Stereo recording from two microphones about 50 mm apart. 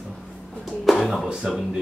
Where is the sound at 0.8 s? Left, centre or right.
Centre.